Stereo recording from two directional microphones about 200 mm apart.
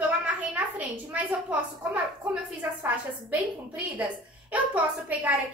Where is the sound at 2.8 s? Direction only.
10° right (ahead or behind).